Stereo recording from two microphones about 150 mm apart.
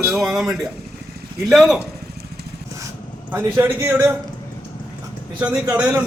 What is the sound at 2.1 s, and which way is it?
Vehicle, 90° right.